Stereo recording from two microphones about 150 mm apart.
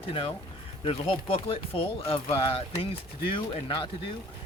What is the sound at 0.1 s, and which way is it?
Speech, 35° left (ahead or behind).